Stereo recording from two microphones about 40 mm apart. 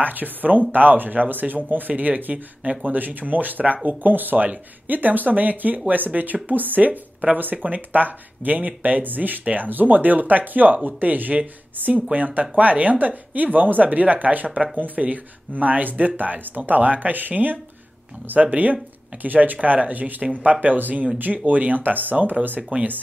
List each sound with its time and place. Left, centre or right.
0.0 s speech: right
22.6 s speech: right